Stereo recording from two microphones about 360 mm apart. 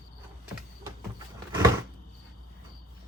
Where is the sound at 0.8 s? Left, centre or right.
Centre.